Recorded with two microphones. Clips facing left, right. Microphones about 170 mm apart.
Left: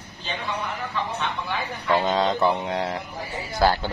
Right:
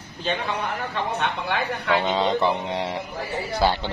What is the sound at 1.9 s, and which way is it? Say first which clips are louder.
Speech: left 1 dB; centre (ahead or behind).